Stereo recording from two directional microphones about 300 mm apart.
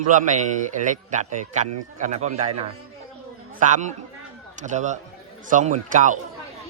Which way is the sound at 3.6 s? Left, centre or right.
Right.